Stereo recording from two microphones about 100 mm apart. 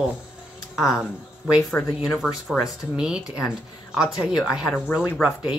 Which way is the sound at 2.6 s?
10° right (ahead or behind).